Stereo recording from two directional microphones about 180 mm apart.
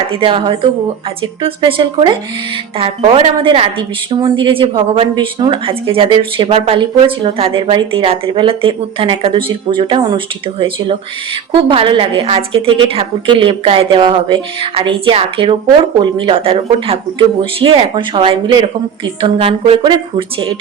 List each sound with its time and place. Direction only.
0.1 s speech: 30° right (ahead or behind)